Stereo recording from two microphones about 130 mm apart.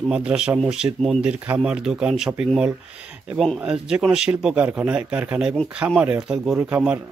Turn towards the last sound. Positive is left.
turn(degrees=-15)  # may be behind; listen again after turning